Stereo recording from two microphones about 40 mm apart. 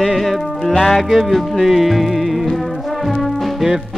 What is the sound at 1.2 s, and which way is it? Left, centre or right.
Music, centre.